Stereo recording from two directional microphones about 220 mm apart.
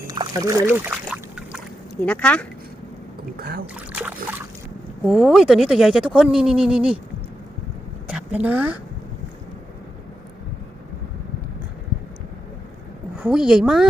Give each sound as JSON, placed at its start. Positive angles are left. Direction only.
{"t": 0.1, "sound": "a sound", "side_deg": -20}
{"t": 3.3, "sound": "speech", "side_deg": -45}
{"t": 3.8, "sound": "boat", "side_deg": -5}
{"t": 5.0, "sound": "speech", "side_deg": 0}
{"t": 8.0, "sound": "a sound", "side_deg": -5}
{"t": 13.1, "sound": "speech", "side_deg": -5}